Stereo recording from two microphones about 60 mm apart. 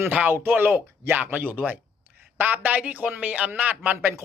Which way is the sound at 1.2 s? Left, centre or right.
Right.